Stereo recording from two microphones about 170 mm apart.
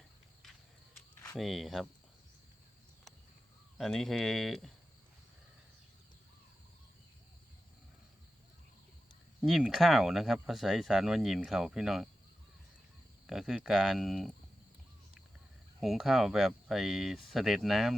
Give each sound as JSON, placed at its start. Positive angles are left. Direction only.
{"t": 1.3, "sound": "speech", "side_deg": 0}
{"t": 3.8, "sound": "speech", "side_deg": 0}
{"t": 9.4, "sound": "speech", "side_deg": 0}
{"t": 13.2, "sound": "speech", "side_deg": 0}
{"t": 15.8, "sound": "speech", "side_deg": 0}